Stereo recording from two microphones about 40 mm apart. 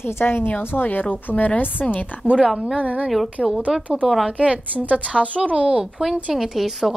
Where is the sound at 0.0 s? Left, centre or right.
Left.